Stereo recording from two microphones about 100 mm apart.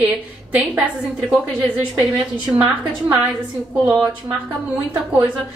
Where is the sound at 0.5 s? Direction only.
15° right (ahead or behind).